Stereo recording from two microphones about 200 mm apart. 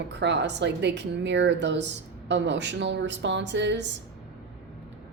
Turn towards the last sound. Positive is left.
turn(degrees=-60)  # may be behind; listen again after turning